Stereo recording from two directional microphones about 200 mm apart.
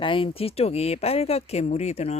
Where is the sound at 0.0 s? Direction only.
25° left (ahead or behind).